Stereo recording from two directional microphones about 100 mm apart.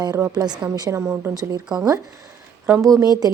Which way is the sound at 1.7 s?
40° right (ahead or behind).